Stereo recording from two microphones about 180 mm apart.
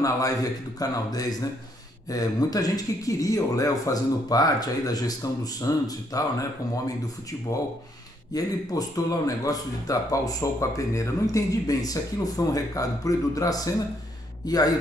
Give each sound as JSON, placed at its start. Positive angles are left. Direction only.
{"t": 0.0, "sound": "speech", "side_deg": 20}
{"t": 8.3, "sound": "a man's voice", "side_deg": 20}